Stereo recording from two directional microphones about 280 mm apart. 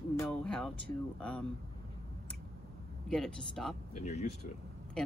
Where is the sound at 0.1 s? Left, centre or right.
Centre.